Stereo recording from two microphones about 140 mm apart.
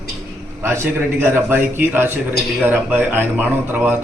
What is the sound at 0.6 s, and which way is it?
A man's voice, 15° right (ahead or behind).